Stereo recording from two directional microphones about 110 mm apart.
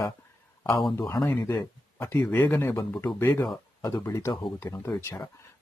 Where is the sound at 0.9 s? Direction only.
30° left (ahead or behind).